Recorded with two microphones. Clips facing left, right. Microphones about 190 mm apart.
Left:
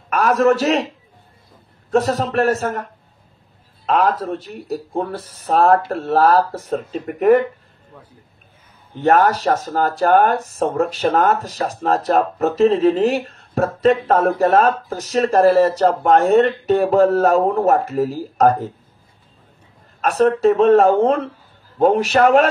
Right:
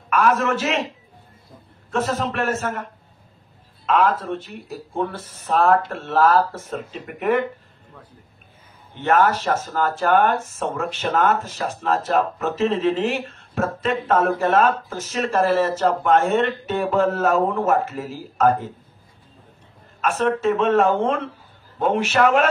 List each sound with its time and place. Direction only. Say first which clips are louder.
0.1 s speech: left 4 dB; 40° left (ahead or behind)
1.9 s speech: left 5 dB; 40° left (ahead or behind)
8.9 s speech: left 4 dB; 40° left (ahead or behind)
20.0 s speech: left 6 dB; 35° left (ahead or behind)